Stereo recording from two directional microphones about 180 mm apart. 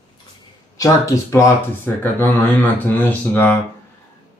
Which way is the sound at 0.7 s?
20° left (ahead or behind).